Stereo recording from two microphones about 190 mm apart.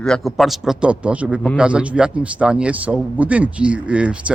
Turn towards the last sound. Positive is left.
turn(degrees=-5)  # may be behind; listen again after turning